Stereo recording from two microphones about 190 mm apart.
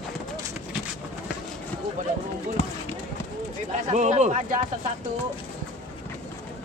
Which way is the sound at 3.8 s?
40° right (ahead or behind).